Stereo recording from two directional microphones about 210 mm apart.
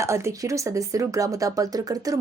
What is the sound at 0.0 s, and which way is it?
Speech, 15° right (ahead or behind).